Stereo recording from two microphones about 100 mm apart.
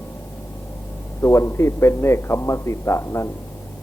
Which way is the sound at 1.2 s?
30° left (ahead or behind).